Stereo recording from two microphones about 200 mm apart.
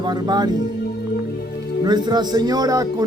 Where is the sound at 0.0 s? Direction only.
20° right (ahead or behind).